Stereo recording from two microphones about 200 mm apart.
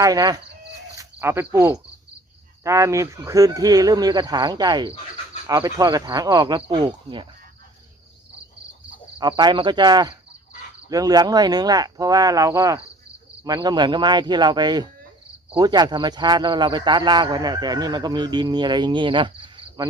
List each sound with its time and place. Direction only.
0.0 s speech: 20° right (ahead or behind)
9.1 s speech: 20° right (ahead or behind)